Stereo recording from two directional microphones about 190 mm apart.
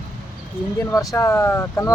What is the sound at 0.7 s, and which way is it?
Speech, 15° left (ahead or behind).